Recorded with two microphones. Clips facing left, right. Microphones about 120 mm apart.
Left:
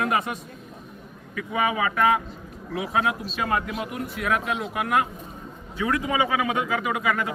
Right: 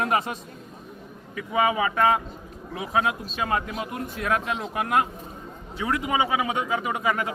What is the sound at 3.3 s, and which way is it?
A man's voice, 30° right (ahead or behind).